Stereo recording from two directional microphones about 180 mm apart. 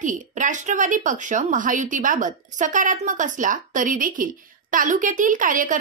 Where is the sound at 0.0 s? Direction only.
45° right (ahead or behind).